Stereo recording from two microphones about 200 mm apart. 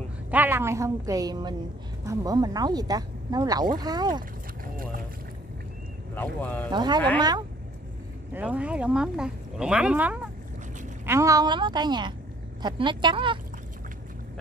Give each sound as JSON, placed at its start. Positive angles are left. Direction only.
{"t": 0.3, "sound": "a woman's voice", "side_deg": -10}
{"t": 6.1, "sound": "speech", "side_deg": 10}
{"t": 6.7, "sound": "speech", "side_deg": -20}
{"t": 8.3, "sound": "speech", "side_deg": -10}